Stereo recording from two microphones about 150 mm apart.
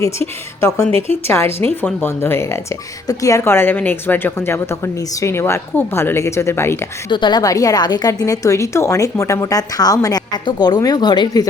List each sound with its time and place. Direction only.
0.0 s a woman's voice: 20° left (ahead or behind)
7.1 s a woman's voice: 30° left (ahead or behind)